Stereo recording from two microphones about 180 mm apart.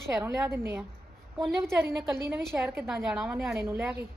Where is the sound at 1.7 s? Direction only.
15° right (ahead or behind).